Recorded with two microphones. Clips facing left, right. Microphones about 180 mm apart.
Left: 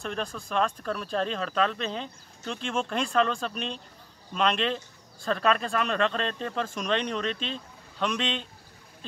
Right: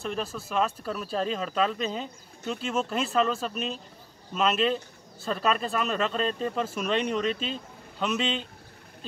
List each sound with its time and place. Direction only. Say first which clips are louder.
0.0 s speech: right 1 dB; 5° right (ahead or behind)